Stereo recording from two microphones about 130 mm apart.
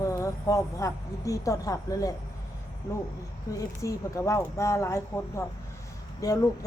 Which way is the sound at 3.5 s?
25° left (ahead or behind).